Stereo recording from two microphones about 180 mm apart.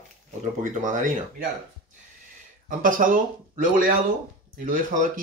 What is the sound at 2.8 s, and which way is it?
Speech, 50° right (ahead or behind).